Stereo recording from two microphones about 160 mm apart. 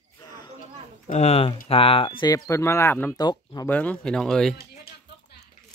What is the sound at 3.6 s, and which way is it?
Speech, 10° left (ahead or behind).